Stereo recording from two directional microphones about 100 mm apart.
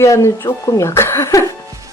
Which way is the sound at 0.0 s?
30° left (ahead or behind).